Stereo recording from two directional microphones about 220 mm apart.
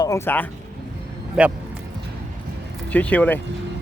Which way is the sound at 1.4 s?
5° right (ahead or behind).